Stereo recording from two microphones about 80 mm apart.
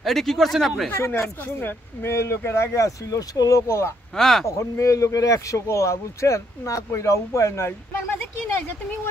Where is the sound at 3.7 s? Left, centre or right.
Left.